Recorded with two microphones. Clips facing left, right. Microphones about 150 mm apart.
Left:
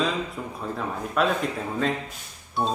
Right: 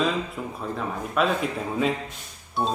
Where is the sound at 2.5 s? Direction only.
Centre (ahead or behind).